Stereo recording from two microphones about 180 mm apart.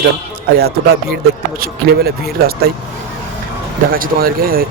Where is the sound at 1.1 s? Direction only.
60° right (ahead or behind).